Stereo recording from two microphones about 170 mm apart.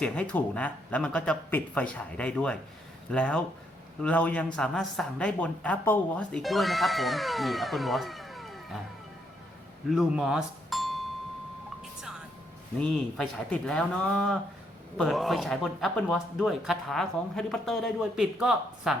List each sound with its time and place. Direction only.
0.0 s speech: 5° left (ahead or behind)
9.9 s speech: 5° right (ahead or behind)
12.8 s speech: 5° left (ahead or behind)